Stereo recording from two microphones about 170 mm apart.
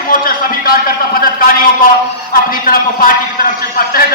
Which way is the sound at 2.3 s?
55° left (ahead or behind).